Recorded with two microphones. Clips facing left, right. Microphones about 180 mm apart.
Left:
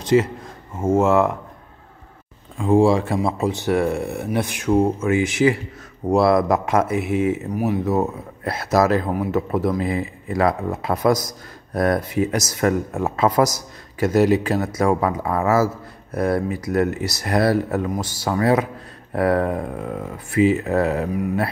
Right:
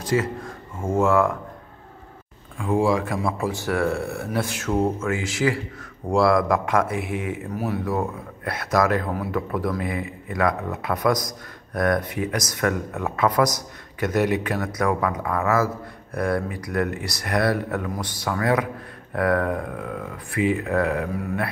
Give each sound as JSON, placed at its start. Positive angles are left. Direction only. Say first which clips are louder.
{"t": 0.0, "sound": "speech", "louder": "left 6 dB", "side_deg": 20}
{"t": 2.5, "sound": "speech", "louder": "left 5 dB", "side_deg": 25}